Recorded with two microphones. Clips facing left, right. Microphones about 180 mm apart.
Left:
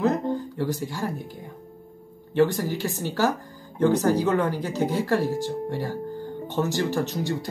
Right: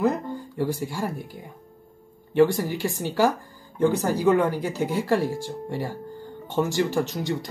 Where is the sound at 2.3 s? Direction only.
15° right (ahead or behind).